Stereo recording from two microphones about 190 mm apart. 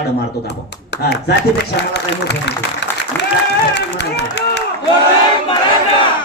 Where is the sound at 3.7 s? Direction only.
65° left (ahead or behind).